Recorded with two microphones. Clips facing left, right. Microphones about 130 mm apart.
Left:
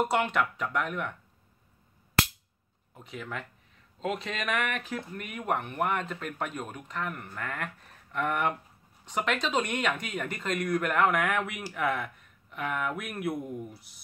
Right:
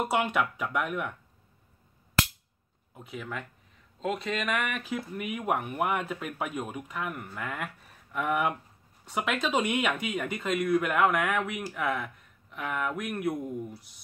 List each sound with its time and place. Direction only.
0.0 s speech: 5° right (ahead or behind)
2.9 s speech: centre (ahead or behind)